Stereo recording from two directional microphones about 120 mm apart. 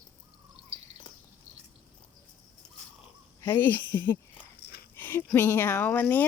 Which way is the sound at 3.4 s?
20° left (ahead or behind).